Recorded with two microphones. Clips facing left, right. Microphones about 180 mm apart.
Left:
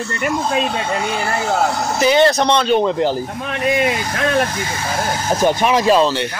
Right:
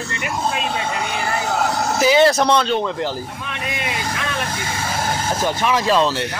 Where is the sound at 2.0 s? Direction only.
5° right (ahead or behind).